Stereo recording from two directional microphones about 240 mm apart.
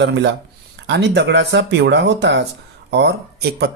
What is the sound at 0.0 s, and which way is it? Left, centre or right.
Speech, right.